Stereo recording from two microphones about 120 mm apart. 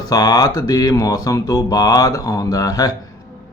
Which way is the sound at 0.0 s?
30° left (ahead or behind).